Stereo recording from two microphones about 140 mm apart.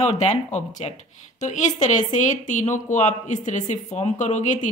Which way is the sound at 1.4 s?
60° left (ahead or behind).